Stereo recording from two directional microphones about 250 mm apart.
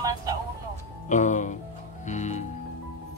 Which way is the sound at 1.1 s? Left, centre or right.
Left.